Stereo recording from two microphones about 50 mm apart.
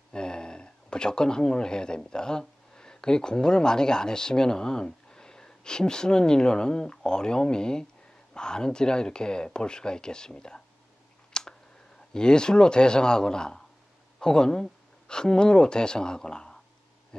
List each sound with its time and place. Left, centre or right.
0.1 s speech: centre
11.3 s clicking: centre
12.1 s speech: centre